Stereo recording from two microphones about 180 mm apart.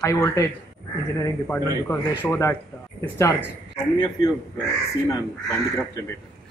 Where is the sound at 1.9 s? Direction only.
10° left (ahead or behind).